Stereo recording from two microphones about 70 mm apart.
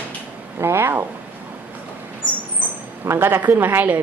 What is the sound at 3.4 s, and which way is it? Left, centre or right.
Speech, right.